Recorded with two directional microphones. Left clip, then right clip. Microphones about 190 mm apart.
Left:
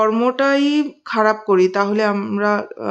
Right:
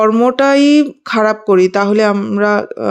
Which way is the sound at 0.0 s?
20° right (ahead or behind).